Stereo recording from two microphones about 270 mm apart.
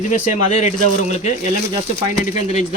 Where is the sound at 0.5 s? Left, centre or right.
Left.